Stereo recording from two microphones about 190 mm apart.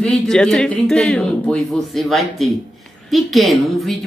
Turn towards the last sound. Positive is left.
turn(degrees=0)  # may be behind; listen again after turning